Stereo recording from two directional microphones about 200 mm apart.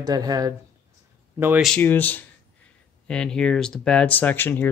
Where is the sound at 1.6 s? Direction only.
5° left (ahead or behind).